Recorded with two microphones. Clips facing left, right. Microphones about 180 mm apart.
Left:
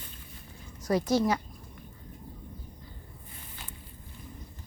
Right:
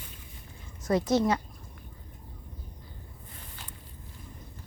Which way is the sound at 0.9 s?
25° right (ahead or behind).